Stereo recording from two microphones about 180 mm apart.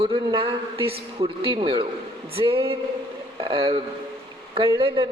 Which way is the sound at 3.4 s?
30° right (ahead or behind).